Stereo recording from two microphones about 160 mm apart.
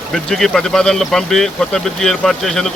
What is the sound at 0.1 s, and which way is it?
Speech, centre (ahead or behind).